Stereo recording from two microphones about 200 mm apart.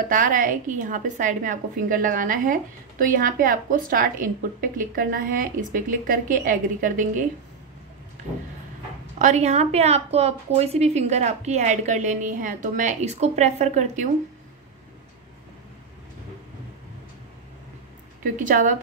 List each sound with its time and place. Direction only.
0.1 s a woman's voice: 40° right (ahead or behind)
9.2 s a woman's voice: 35° right (ahead or behind)
18.3 s a woman's voice: 40° right (ahead or behind)